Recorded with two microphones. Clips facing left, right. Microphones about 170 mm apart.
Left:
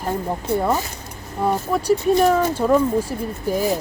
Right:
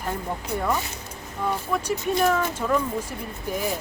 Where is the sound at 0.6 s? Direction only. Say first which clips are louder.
Left 5 dB; 35° left (ahead or behind).